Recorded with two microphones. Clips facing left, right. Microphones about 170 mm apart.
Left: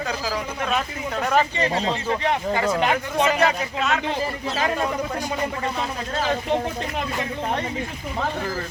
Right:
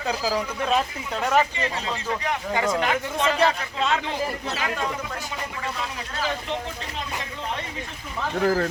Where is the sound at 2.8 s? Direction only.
15° left (ahead or behind).